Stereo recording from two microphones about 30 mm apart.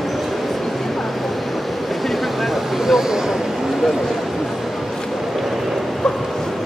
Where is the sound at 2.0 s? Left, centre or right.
Centre.